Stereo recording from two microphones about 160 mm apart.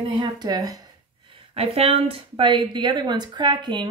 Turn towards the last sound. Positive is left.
turn(degrees=-30)  # may be behind; listen again after turning